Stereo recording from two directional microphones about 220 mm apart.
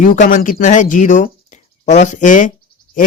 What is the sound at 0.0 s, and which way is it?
Speech, 35° left (ahead or behind).